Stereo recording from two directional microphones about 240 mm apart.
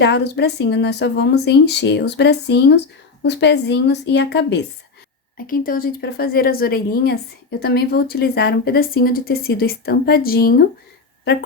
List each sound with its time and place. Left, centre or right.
0.0 s speech: left